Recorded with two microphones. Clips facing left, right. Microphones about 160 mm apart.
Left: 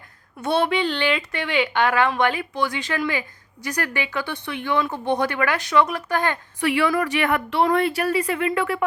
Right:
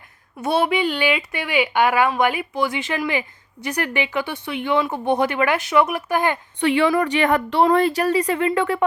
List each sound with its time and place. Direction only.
0.4 s speech: 5° right (ahead or behind)
2.3 s speech: 15° right (ahead or behind)
6.6 s a woman's voice: 30° right (ahead or behind)